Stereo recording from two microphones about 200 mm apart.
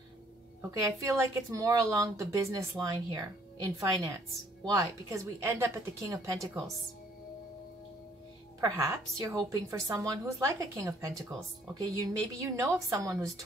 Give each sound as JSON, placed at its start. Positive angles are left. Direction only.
{"t": 0.6, "sound": "a woman's voice", "side_deg": -15}
{"t": 8.5, "sound": "a woman's voice", "side_deg": -15}